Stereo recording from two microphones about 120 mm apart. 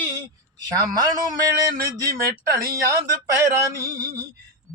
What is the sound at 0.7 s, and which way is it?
Speech, 35° right (ahead or behind).